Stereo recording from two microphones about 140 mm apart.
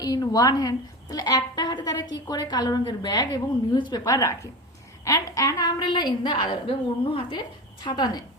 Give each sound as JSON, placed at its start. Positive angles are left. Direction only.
{"t": 0.0, "sound": "a woman's voice", "side_deg": 25}